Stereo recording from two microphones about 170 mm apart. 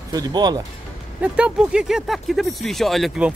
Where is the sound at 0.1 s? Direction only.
25° right (ahead or behind).